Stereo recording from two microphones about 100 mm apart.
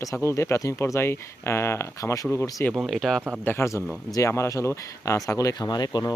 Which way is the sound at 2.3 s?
25° left (ahead or behind).